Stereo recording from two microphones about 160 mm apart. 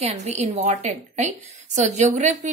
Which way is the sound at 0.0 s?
45° right (ahead or behind).